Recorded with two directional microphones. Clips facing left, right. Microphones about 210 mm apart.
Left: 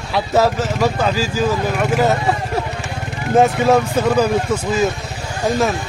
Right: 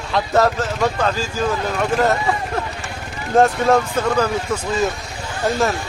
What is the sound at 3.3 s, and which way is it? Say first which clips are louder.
Speech: left 1 dB; 5° left (ahead or behind).